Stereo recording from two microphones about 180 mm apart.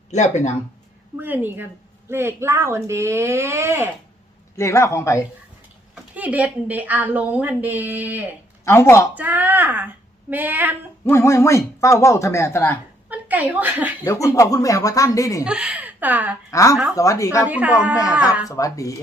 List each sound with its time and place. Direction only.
0.1 s speech: 40° left (ahead or behind)
1.2 s a woman's voice: 10° right (ahead or behind)
4.5 s speech: 15° left (ahead or behind)
5.9 s a woman's voice: 10° right (ahead or behind)
8.6 s speech: 15° left (ahead or behind)
9.1 s a woman's voice: 10° right (ahead or behind)
11.0 s speech: 15° left (ahead or behind)
13.1 s speech: 10° right (ahead or behind)
14.0 s speech: 15° left (ahead or behind)
15.4 s a woman's voice: 5° right (ahead or behind)
16.5 s speech: 15° left (ahead or behind)
17.5 s a woman's voice: 10° right (ahead or behind)
18.4 s speech: 20° left (ahead or behind)